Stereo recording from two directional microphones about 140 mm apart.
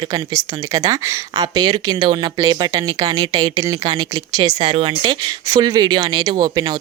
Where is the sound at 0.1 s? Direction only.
25° right (ahead or behind).